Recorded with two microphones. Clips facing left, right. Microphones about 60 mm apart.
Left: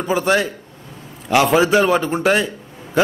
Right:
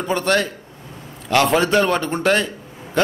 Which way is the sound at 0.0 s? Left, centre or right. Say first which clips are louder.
Left 2 dB; centre.